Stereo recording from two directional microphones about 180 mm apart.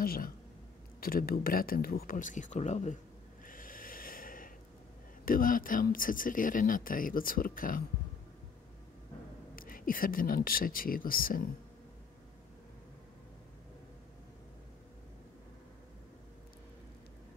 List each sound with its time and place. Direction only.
0.0 s speech: 55° left (ahead or behind)
3.4 s snort: 50° left (ahead or behind)
5.2 s speech: 50° left (ahead or behind)
9.6 s speech: 50° left (ahead or behind)